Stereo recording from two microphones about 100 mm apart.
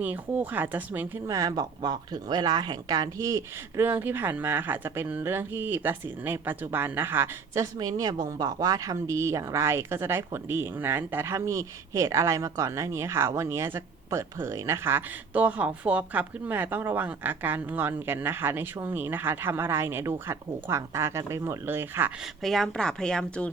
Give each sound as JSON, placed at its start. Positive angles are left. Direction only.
{"t": 0.0, "sound": "speech", "side_deg": -20}
{"t": 1.3, "sound": "speech", "side_deg": -35}
{"t": 3.8, "sound": "speech", "side_deg": -20}
{"t": 22.4, "sound": "speech", "side_deg": 5}